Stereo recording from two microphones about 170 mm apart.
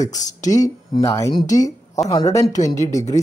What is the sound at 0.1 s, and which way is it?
Speech, 45° left (ahead or behind).